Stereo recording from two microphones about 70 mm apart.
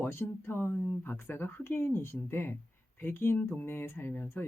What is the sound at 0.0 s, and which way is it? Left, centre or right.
Speech, left.